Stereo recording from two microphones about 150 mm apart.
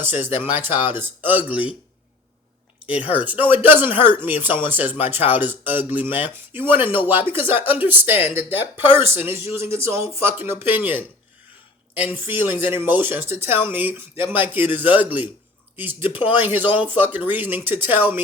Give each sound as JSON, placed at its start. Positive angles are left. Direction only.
{"t": 0.0, "sound": "speech", "side_deg": -15}
{"t": 2.9, "sound": "speech", "side_deg": -10}